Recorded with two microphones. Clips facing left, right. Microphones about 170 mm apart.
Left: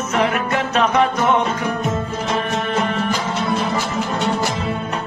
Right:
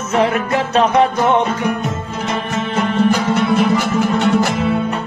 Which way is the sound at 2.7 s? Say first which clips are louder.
Right 7 dB; 30° right (ahead or behind).